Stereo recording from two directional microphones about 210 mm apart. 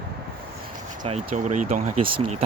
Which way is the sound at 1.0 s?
30° right (ahead or behind).